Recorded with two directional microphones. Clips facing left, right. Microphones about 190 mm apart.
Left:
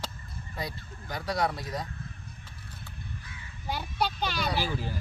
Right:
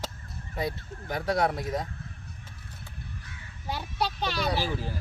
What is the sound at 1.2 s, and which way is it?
Speech, 25° right (ahead or behind).